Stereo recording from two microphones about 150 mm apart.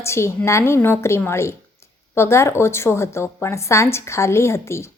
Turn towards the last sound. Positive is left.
turn(degrees=20)  # may be behind; listen again after turning